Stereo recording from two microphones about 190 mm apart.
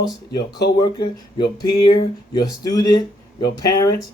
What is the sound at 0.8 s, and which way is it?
Speech, 20° left (ahead or behind).